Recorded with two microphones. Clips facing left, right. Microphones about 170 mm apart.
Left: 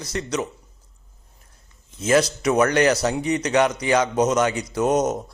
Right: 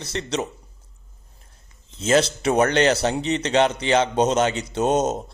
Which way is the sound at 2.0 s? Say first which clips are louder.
Even; 30° right (ahead or behind).